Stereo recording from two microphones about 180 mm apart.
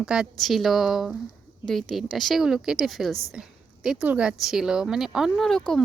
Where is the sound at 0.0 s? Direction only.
5° right (ahead or behind).